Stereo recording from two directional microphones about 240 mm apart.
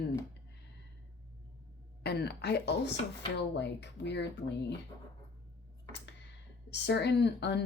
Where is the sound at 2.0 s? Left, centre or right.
Left.